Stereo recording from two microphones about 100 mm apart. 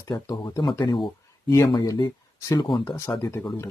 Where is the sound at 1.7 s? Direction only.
45° left (ahead or behind).